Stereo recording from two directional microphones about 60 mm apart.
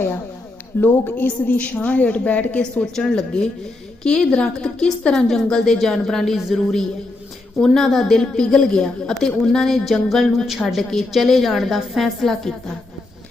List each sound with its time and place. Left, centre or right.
0.8 s a woman's voice: left
2.9 s a woman's voice: centre